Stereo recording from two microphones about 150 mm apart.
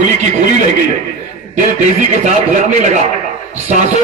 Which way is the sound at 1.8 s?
55° right (ahead or behind).